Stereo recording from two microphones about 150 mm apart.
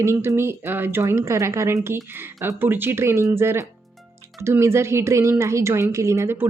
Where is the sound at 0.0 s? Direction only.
20° right (ahead or behind).